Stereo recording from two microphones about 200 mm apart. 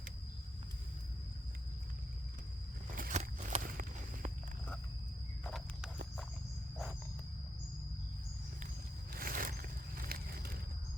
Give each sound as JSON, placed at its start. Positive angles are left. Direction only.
{"t": 2.9, "sound": "walk", "side_deg": -40}
{"t": 5.4, "sound": "walk", "side_deg": 0}
{"t": 9.1, "sound": "a sound", "side_deg": -45}